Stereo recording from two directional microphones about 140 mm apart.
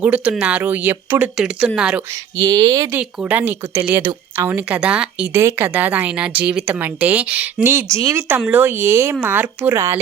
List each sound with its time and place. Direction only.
0.0 s a woman's voice: 10° right (ahead or behind)
2.4 s speech: 30° right (ahead or behind)
2.9 s a woman's voice: 10° right (ahead or behind)